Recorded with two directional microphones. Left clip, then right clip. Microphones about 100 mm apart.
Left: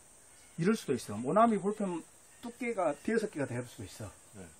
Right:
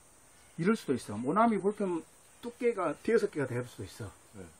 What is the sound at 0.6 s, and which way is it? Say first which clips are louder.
Speech: right 1 dB; 60° left (ahead or behind).